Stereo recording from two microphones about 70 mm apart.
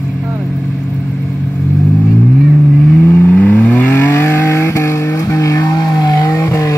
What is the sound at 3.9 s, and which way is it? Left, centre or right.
Vehicle, left.